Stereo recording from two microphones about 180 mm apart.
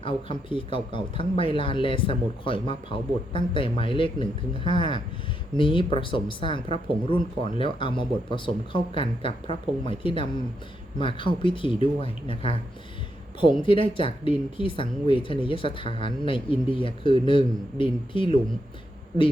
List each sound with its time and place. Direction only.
0.0 s speech: 30° left (ahead or behind)
13.6 s speech: 30° left (ahead or behind)